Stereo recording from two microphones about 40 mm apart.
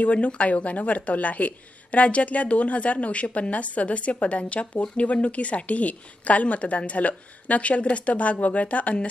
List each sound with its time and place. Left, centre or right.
0.0 s speech: left